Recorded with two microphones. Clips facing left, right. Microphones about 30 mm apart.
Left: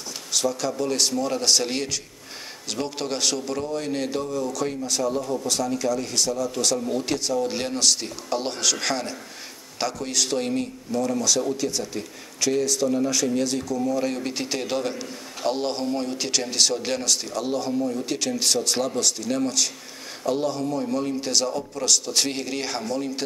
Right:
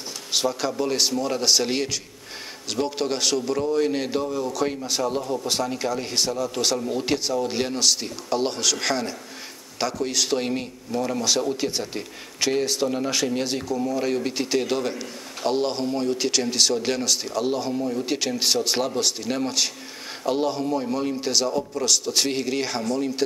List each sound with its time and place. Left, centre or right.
0.3 s speech: right
13.7 s speech: centre